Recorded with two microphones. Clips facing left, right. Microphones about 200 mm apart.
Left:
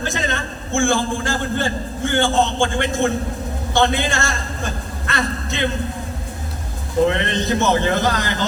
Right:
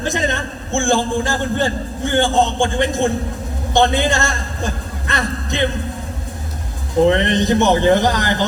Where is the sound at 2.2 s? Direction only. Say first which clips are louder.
Right 2 dB; 15° right (ahead or behind).